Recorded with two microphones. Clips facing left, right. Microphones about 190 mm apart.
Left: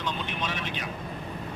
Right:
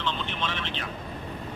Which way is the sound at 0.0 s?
10° left (ahead or behind).